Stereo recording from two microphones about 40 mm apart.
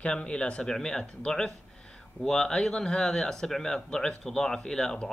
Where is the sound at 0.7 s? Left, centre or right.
Centre.